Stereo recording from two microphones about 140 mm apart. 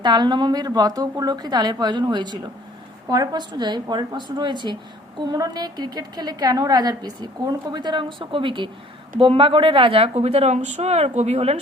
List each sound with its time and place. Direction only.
0.0 s a woman's voice: 30° right (ahead or behind); by 11.6 s 50° right (ahead or behind)